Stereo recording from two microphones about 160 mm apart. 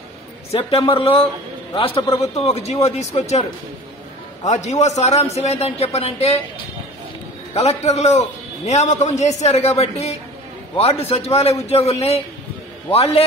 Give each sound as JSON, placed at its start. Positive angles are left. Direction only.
{"t": 0.5, "sound": "a man's voice", "side_deg": 40}
{"t": 4.5, "sound": "a man's voice", "side_deg": 45}
{"t": 7.5, "sound": "a man's voice", "side_deg": 40}